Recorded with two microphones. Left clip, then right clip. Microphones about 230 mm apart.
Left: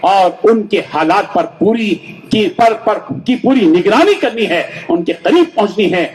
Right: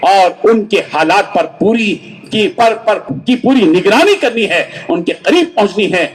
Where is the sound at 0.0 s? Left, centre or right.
Right.